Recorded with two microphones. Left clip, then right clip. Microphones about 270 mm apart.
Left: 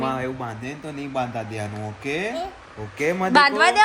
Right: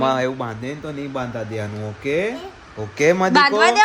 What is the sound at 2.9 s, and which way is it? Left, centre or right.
Speech, right.